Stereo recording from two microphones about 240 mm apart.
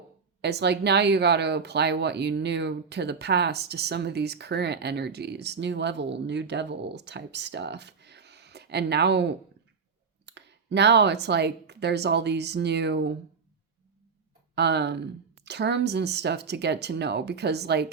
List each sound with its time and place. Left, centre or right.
0.4 s speech: right
14.5 s speech: right